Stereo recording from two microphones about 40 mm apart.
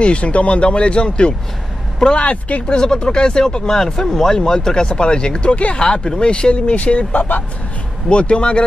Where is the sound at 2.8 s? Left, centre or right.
Centre.